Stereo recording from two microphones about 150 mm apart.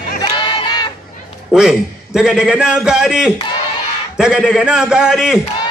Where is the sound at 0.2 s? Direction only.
30° left (ahead or behind).